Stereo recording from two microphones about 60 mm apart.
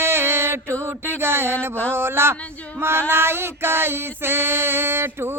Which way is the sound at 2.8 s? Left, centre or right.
Right.